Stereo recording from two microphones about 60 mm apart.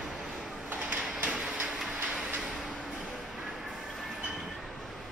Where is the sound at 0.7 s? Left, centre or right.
Right.